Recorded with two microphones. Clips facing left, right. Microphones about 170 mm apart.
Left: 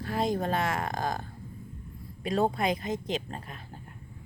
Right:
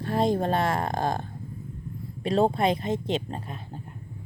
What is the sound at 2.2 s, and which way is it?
Speech, 30° right (ahead or behind).